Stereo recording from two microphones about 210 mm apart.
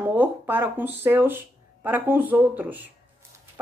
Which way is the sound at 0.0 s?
10° right (ahead or behind).